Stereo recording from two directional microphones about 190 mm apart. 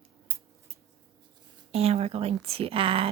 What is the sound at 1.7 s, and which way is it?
A woman's voice, 30° right (ahead or behind).